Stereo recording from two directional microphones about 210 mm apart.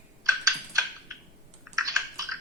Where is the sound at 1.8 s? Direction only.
15° right (ahead or behind).